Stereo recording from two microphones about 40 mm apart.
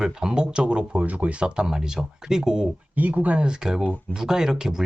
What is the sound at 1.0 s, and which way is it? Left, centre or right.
Speech, right.